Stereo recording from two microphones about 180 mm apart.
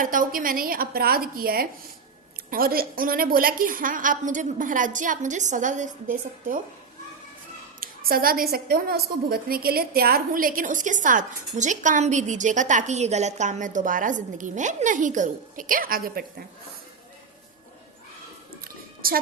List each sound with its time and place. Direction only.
0.0 s a woman's voice: 50° right (ahead or behind)
7.8 s a woman's voice: 55° right (ahead or behind)
19.0 s a woman's voice: 55° right (ahead or behind)